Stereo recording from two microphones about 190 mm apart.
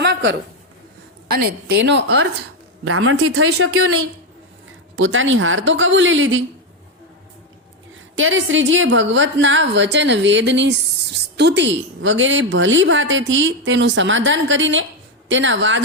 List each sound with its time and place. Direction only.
0.0 s a sound: 70° right (ahead or behind)
1.4 s a woman's voice: 60° right (ahead or behind)
2.8 s speech: 90° right
8.1 s a woman's voice: 90° right